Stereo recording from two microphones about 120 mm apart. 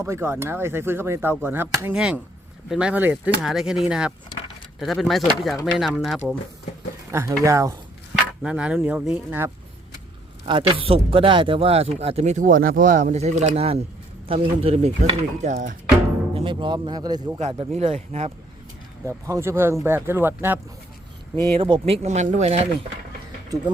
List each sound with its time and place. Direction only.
0.0 s speech: 20° right (ahead or behind)
2.0 s speech: 5° right (ahead or behind)
3.4 s speech: 5° right (ahead or behind)
7.1 s speech: 25° right (ahead or behind)
8.4 s speech: 10° right (ahead or behind)
10.4 s speech: 45° right (ahead or behind); by 15.7 s 90° right
16.3 s speech: 45° right (ahead or behind)
17.7 s speech: 60° right (ahead or behind)
19.0 s speech: 25° right (ahead or behind)
21.3 s speech: 45° right (ahead or behind); by 22.7 s 60° right (ahead or behind)